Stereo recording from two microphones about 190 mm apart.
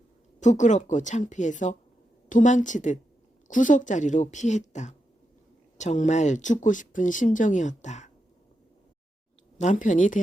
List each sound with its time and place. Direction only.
0.3 s speech: 40° left (ahead or behind)
9.6 s speech: 40° left (ahead or behind)